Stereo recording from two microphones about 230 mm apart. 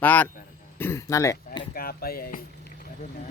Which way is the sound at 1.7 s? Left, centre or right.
Left.